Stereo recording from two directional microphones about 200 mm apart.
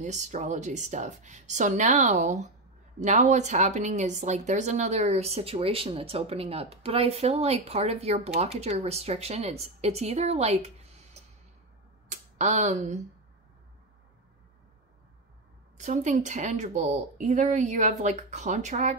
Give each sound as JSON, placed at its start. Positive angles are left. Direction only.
{"t": 0.0, "sound": "speech", "side_deg": -35}
{"t": 15.8, "sound": "speech", "side_deg": -35}